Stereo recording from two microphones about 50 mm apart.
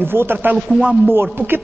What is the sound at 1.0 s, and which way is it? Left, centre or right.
Speech, right.